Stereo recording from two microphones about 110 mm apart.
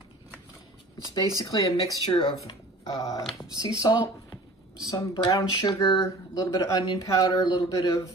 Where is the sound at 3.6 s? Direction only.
35° left (ahead or behind).